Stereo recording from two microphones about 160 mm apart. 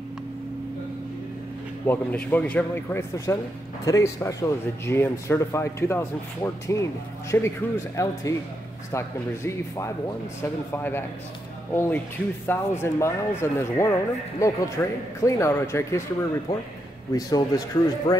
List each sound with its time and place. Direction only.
1.9 s speech: 10° left (ahead or behind)
17.1 s speech: 25° left (ahead or behind)